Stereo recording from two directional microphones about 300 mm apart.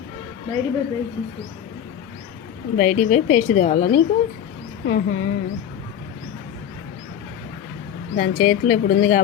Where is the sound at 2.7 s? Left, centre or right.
Left.